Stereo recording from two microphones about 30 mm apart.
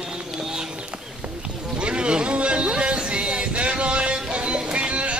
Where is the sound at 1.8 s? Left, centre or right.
Right.